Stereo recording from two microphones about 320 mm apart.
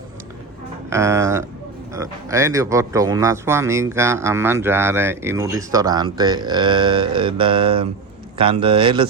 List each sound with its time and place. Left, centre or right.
0.9 s speech: centre